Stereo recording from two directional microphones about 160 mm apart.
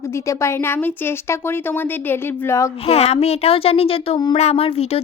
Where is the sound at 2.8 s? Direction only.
40° left (ahead or behind).